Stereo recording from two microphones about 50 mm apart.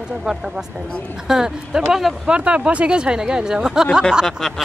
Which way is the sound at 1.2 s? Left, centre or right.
Centre.